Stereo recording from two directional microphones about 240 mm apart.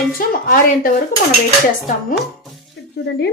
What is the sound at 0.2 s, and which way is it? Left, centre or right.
Speech, left.